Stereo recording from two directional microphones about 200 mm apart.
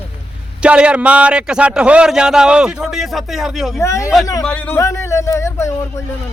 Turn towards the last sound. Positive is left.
turn(degrees=15)  # may be behind; listen again after turning